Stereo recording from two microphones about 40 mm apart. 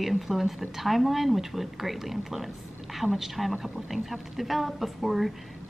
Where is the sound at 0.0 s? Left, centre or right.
Centre.